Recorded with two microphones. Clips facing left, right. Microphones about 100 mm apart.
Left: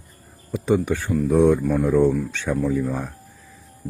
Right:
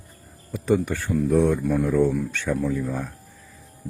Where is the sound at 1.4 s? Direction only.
10° left (ahead or behind).